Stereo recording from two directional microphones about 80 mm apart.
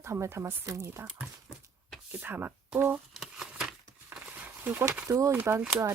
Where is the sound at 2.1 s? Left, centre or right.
Right.